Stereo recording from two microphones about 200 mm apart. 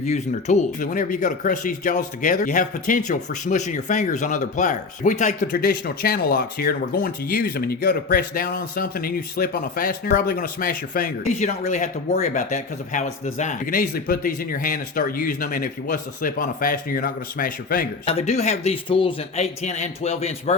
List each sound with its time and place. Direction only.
0.0 s speech: 35° left (ahead or behind)
18.0 s a man's voice: 30° left (ahead or behind)